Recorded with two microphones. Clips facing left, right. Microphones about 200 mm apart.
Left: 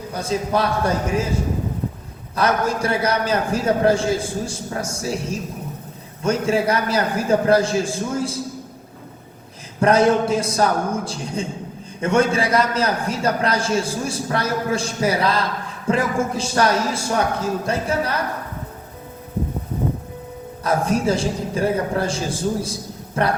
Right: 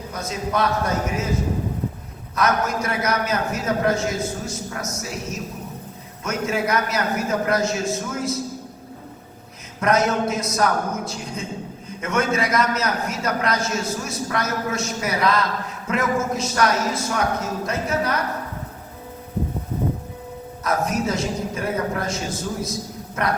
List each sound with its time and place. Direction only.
0.1 s a man's voice: 30° left (ahead or behind)
2.3 s a man's voice: 30° left (ahead or behind)
9.8 s a man's voice: 30° left (ahead or behind)
20.7 s a man's voice: 30° left (ahead or behind)